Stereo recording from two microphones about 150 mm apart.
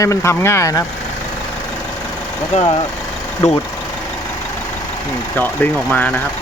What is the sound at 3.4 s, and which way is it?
Speech, 50° left (ahead or behind).